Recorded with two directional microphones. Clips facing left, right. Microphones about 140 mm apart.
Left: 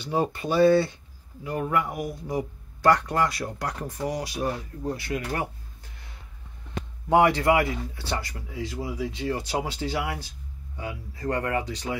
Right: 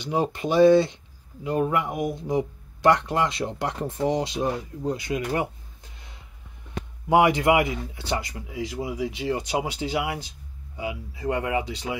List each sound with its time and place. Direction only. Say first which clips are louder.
0.0 s speech: right 1 dB; 15° right (ahead or behind)
7.1 s speech: right 1 dB; 15° right (ahead or behind)